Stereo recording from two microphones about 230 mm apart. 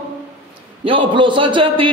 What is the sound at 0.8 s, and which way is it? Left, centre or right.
A man's voice, right.